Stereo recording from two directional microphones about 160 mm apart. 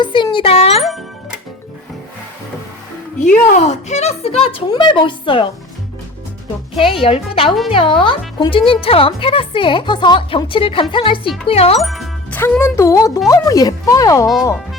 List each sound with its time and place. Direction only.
0.0 s music: 30° left (ahead or behind)
0.9 s music: centre (ahead or behind)
3.4 s a woman's voice: 45° left (ahead or behind); by 5.5 s 30° left (ahead or behind)
6.8 s a woman's voice: 35° left (ahead or behind)
11.8 s music: centre (ahead or behind)
12.4 s speech: 15° left (ahead or behind)